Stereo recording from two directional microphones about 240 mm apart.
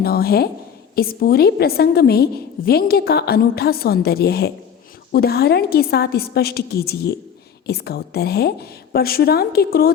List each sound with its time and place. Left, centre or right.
0.0 s a woman's voice: left